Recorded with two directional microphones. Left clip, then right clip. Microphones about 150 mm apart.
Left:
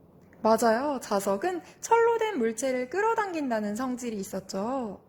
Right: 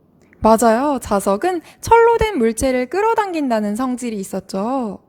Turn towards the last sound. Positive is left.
turn(degrees=-35)  # may be behind; listen again after turning